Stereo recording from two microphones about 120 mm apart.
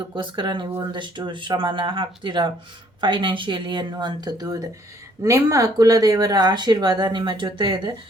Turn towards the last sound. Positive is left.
turn(degrees=-40)  # may be behind; listen again after turning